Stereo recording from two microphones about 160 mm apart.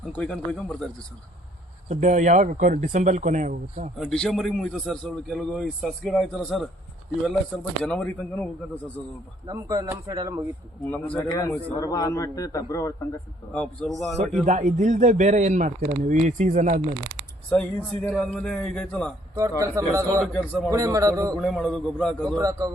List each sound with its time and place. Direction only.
0.2 s a man's voice: 5° left (ahead or behind)
1.9 s a man's voice: 50° right (ahead or behind)
3.9 s a man's voice: centre (ahead or behind)
9.5 s speech: 25° right (ahead or behind)
10.8 s a man's voice: 10° left (ahead or behind)
13.5 s a man's voice: 5° left (ahead or behind)
14.4 s a man's voice: 50° right (ahead or behind)
18.1 s a man's voice: 5° left (ahead or behind)
19.4 s speech: 20° right (ahead or behind)
20.2 s a man's voice: 5° left (ahead or behind)
20.7 s speech: 20° right (ahead or behind)
21.3 s a man's voice: 5° left (ahead or behind)
22.4 s speech: 20° right (ahead or behind)